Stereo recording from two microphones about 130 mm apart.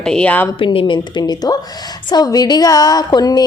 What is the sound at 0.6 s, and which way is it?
A woman's voice, 40° left (ahead or behind).